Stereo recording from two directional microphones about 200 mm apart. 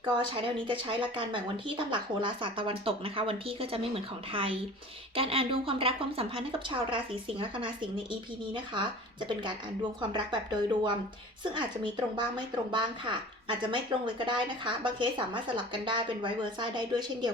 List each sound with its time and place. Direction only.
0.0 s speech: 25° right (ahead or behind)